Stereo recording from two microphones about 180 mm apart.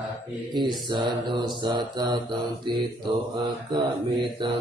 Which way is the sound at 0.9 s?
25° right (ahead or behind).